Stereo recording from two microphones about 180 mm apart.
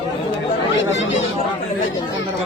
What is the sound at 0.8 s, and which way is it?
Speech, 90° left.